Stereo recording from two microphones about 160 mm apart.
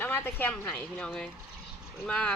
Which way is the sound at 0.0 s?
15° left (ahead or behind).